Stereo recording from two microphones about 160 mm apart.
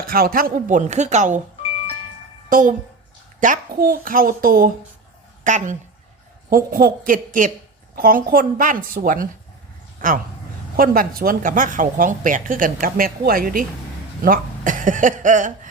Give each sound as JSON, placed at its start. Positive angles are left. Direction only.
{"t": 0.1, "sound": "speech", "side_deg": -65}
{"t": 2.5, "sound": "a child's voice", "side_deg": -55}
{"t": 5.4, "sound": "speech", "side_deg": -50}
{"t": 6.7, "sound": "speech", "side_deg": -65}